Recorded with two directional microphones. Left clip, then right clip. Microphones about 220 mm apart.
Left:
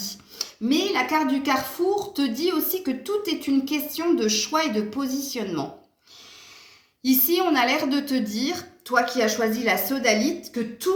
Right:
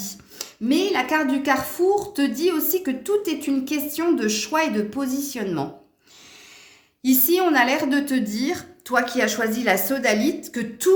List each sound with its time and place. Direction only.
0.3 s speech: 45° right (ahead or behind)
7.0 s speech: 45° right (ahead or behind)
10.1 s a woman's voice: 90° right